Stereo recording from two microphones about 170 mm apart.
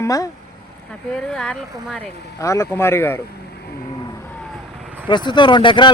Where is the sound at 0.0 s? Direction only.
20° left (ahead or behind).